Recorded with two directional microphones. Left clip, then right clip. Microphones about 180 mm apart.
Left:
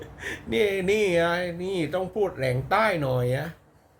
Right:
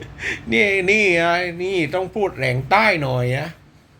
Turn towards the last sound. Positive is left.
turn(degrees=15)  # may be behind; listen again after turning